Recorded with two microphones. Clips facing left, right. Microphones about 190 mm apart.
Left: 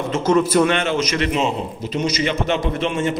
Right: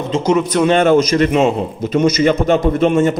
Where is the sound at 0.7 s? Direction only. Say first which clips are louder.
Right 9 dB; 40° right (ahead or behind).